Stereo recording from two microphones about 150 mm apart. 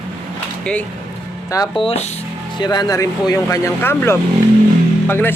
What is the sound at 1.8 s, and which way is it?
Speech, 45° left (ahead or behind).